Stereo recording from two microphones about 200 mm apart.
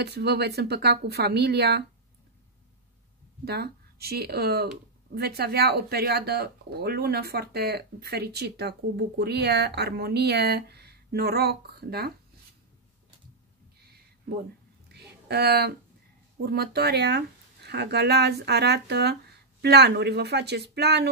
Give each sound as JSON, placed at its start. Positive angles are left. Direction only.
{"t": 0.0, "sound": "speech", "side_deg": -55}
{"t": 3.4, "sound": "speech", "side_deg": -55}
{"t": 14.9, "sound": "a sound", "side_deg": -55}
{"t": 16.4, "sound": "speech", "side_deg": -50}